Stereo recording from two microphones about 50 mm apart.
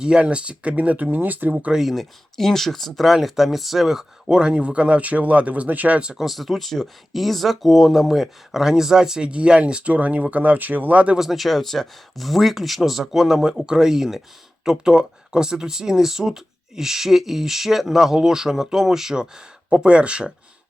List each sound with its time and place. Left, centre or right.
0.0 s speech: centre
1.7 s speech: centre; by 6.0 s right
6.1 s speech: centre; by 11.2 s right
11.2 s speech: centre; by 20.3 s right